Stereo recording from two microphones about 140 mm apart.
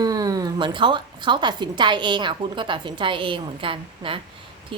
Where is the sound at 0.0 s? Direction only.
25° right (ahead or behind).